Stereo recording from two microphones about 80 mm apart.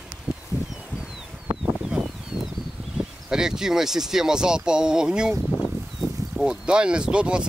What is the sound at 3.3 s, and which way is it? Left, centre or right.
Speech, centre.